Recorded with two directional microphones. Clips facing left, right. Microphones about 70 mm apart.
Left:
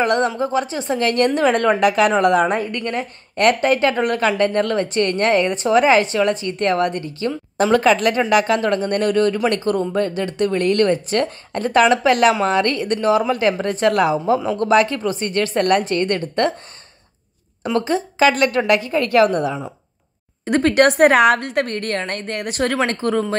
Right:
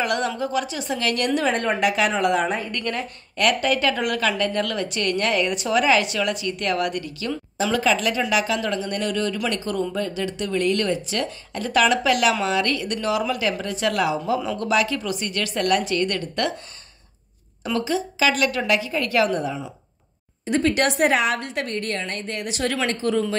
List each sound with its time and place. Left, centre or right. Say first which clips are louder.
0.0 s speech: left 6 dB; left
1.4 s a woman's voice: left 6 dB; left
1.8 s a woman's voice: left 6 dB; left
2.8 s a woman's voice: left 3 dB; left
7.5 s a woman's voice: left 6 dB; left
17.8 s a woman's voice: left 6 dB; left